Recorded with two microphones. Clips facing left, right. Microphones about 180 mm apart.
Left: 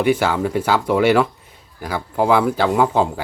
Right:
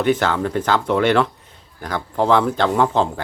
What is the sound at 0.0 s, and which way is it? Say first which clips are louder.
Speech: left 1 dB; 10° left (ahead or behind).